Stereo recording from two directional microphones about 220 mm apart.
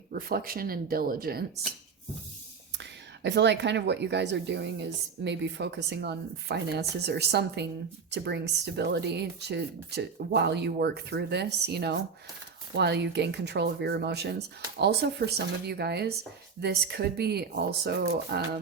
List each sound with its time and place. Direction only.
0.1 s a woman's voice: 40° right (ahead or behind)
3.2 s a woman's voice: 50° right (ahead or behind)
15.6 s a woman's voice: 50° right (ahead or behind)